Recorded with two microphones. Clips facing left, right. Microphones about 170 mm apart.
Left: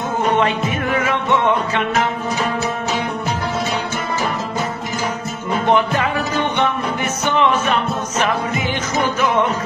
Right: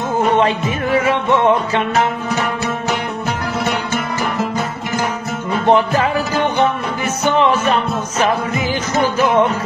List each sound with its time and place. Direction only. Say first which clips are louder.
0.2 s music: right 2 dB; 30° right (ahead or behind)
5.7 s music: right 3 dB; 35° right (ahead or behind)
9.2 s music: right 4 dB; 35° right (ahead or behind)